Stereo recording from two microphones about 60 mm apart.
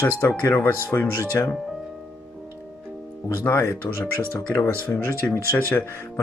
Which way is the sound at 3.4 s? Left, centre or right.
Left.